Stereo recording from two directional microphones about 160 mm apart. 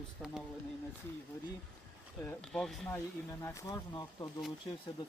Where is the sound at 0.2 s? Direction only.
5° left (ahead or behind).